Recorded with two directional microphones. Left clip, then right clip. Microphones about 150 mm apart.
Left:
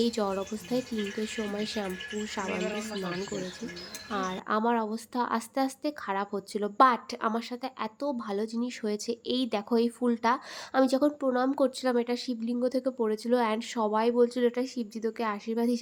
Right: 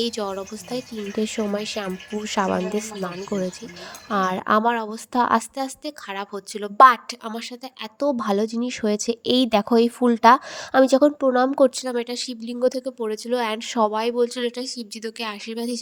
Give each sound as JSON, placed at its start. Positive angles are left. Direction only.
{"t": 0.0, "sound": "speech", "side_deg": -45}
{"t": 3.3, "sound": "speech", "side_deg": -30}
{"t": 4.1, "sound": "speech", "side_deg": -45}
{"t": 11.9, "sound": "speech", "side_deg": -55}